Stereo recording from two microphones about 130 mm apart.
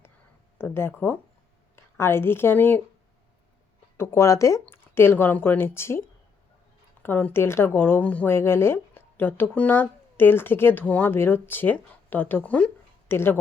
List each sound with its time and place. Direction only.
0.6 s speech: 20° left (ahead or behind)
3.9 s speech: 20° left (ahead or behind)